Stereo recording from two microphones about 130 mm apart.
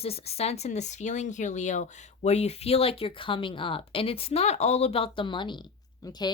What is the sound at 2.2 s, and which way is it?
Speech, 55° left (ahead or behind).